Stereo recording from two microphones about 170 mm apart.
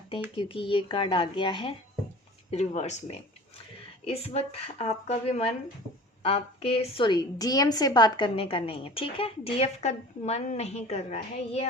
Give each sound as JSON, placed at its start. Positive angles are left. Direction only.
{"t": 0.3, "sound": "a woman's voice", "side_deg": 30}
{"t": 2.5, "sound": "a woman's voice", "side_deg": 40}